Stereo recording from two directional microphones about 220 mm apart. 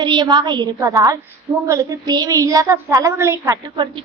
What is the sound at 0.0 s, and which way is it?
A woman's voice, 20° right (ahead or behind).